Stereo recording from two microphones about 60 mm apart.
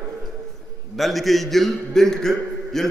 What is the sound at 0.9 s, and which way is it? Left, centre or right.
A man's voice, centre.